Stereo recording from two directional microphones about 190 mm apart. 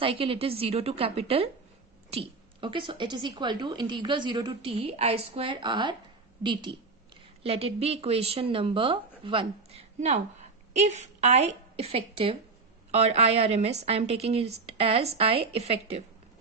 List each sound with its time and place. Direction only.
0.0 s a woman's voice: 30° right (ahead or behind)